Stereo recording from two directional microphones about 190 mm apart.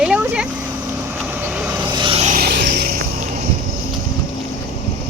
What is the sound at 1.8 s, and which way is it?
Vehicle, 25° right (ahead or behind).